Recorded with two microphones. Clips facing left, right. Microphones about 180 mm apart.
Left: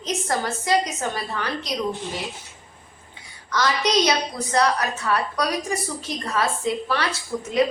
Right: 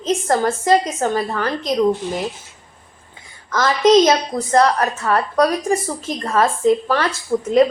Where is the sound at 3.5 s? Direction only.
45° right (ahead or behind).